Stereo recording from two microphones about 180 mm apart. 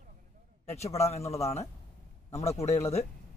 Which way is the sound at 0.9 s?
35° left (ahead or behind).